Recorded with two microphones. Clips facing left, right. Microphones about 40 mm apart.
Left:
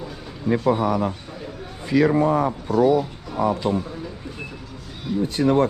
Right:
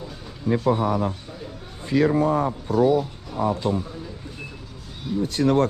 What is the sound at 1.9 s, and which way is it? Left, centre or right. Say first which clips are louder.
Speech: left 2 dB; left.